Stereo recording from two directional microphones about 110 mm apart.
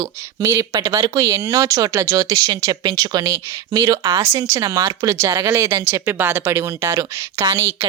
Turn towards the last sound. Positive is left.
turn(degrees=-25)  # may be behind; listen again after turning